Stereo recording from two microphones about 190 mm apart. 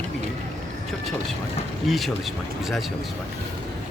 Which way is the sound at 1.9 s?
Centre (ahead or behind).